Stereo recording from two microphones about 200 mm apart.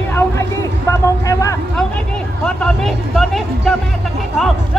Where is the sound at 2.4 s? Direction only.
5° left (ahead or behind).